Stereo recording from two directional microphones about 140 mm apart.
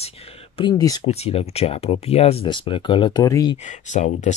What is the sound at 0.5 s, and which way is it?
Speech, 30° left (ahead or behind).